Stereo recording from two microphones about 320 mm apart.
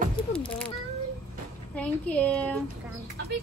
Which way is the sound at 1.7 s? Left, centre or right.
Centre.